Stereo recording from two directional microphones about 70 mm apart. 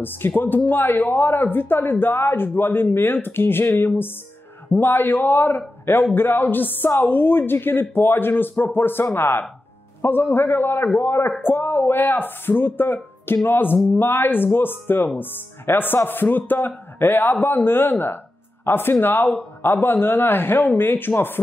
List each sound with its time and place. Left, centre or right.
0.4 s speech: left